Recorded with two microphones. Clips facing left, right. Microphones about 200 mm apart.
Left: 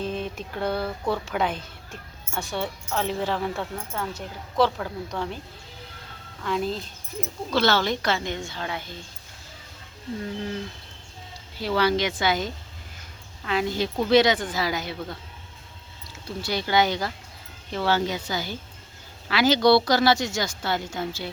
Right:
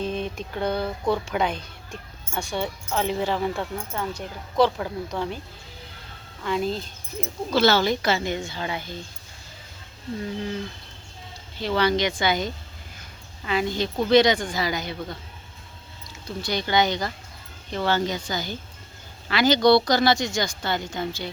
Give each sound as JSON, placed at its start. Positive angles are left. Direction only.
{"t": 0.0, "sound": "speech", "side_deg": 5}
{"t": 6.4, "sound": "speech", "side_deg": 0}
{"t": 10.2, "sound": "speech", "side_deg": 0}
{"t": 11.6, "sound": "speech", "side_deg": 5}
{"t": 16.2, "sound": "speech", "side_deg": 5}